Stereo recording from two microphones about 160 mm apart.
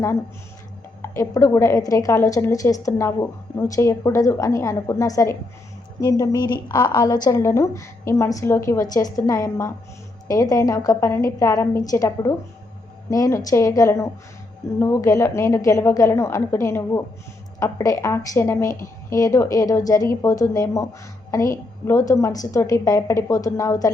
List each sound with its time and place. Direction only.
1.0 s a woman's voice: 20° left (ahead or behind)